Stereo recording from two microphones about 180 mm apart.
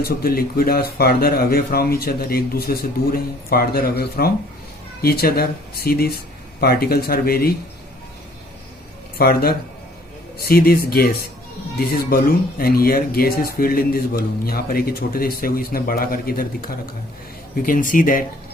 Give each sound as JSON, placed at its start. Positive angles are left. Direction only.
{"t": 0.0, "sound": "speech", "side_deg": 55}
{"t": 9.1, "sound": "speech", "side_deg": 55}
{"t": 12.1, "sound": "speech", "side_deg": 55}